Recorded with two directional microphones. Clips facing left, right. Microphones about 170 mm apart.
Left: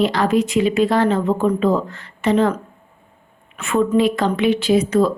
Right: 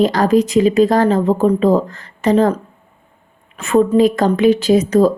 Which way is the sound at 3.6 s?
40° right (ahead or behind).